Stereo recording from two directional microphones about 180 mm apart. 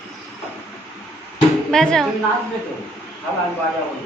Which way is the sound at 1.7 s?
5° left (ahead or behind).